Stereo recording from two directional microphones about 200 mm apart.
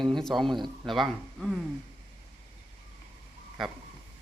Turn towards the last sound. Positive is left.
turn(degrees=0)  # may be behind; listen again after turning